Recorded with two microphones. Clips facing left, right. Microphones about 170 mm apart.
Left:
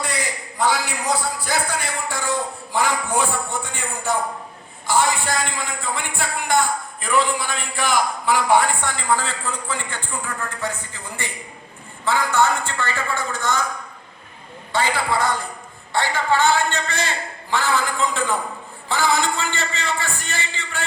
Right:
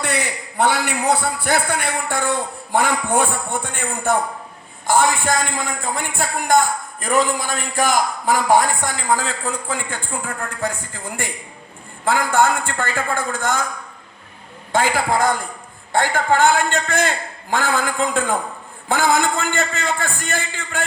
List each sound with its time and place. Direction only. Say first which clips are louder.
0.0 s a man's voice: right 3 dB; 65° right (ahead or behind)
14.7 s a man's voice: right 3 dB; 45° right (ahead or behind)